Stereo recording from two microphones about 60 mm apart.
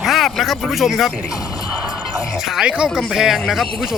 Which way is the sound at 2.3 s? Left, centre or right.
Centre.